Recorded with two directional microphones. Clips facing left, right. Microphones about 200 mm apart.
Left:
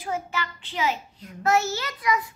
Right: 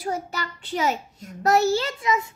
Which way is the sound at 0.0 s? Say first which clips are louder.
Right 1 dB; 40° right (ahead or behind).